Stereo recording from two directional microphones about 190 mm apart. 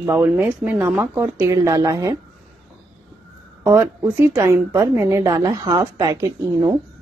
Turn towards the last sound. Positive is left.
turn(degrees=-20)  # may be behind; listen again after turning